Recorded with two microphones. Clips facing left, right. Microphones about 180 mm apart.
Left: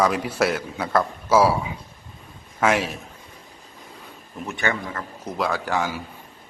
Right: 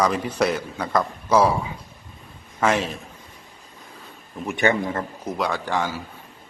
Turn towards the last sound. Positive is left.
turn(degrees=10)  # may be behind; listen again after turning